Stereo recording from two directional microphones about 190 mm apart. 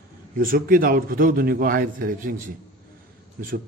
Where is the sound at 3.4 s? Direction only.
50° right (ahead or behind).